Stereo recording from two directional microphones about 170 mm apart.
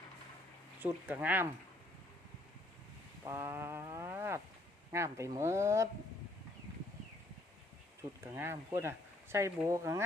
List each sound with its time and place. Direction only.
0.8 s speech: 10° right (ahead or behind)
3.2 s a sound: 15° right (ahead or behind)
4.9 s speech: 15° right (ahead or behind)
8.2 s speech: 15° right (ahead or behind)